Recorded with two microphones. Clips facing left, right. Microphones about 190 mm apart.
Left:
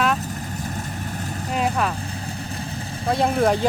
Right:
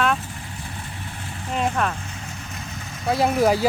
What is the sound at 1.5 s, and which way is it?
Speech, 5° left (ahead or behind).